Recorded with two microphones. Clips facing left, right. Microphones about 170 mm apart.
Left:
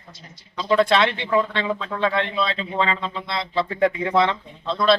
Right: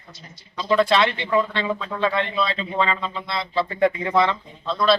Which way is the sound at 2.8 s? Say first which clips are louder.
Even; 15° left (ahead or behind).